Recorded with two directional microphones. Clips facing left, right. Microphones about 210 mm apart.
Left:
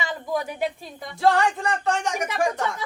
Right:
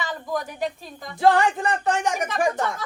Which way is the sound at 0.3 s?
5° left (ahead or behind).